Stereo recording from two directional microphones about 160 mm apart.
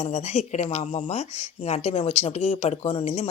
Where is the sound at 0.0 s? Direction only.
40° left (ahead or behind).